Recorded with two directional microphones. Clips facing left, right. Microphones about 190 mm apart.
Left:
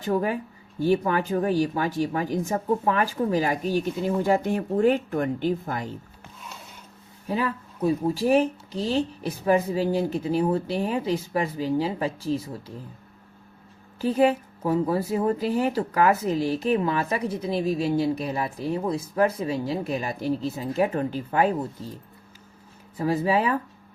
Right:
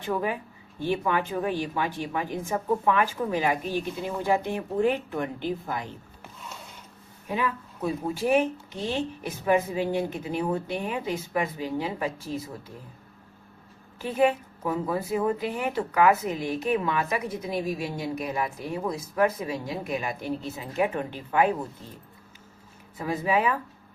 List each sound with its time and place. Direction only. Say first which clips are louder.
0.0 s speech: left 4 dB; 40° left (ahead or behind)
7.3 s speech: left 2 dB; 35° left (ahead or behind)
14.0 s speech: left 3 dB; 35° left (ahead or behind)
23.0 s speech: left 3 dB; 35° left (ahead or behind)